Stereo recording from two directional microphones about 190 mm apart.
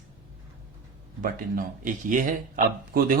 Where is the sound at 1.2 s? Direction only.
50° right (ahead or behind).